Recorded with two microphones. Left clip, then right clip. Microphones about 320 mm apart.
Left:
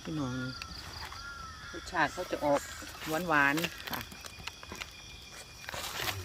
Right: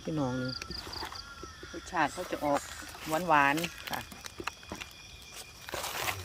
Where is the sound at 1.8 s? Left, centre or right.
Centre.